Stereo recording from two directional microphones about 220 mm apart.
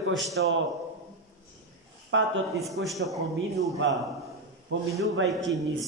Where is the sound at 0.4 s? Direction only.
60° right (ahead or behind).